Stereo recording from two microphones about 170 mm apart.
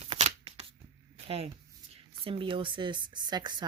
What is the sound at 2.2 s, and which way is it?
Speech, 30° right (ahead or behind).